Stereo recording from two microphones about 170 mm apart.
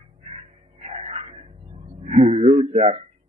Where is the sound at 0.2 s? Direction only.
35° right (ahead or behind).